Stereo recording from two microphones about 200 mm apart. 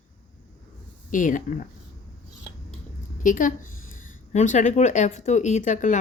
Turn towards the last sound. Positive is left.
turn(degrees=40)  # may be behind; listen again after turning